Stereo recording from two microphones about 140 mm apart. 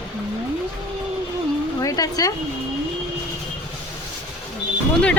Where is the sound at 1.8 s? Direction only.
25° left (ahead or behind).